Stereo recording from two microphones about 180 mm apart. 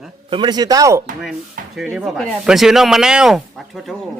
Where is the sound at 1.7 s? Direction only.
Centre (ahead or behind).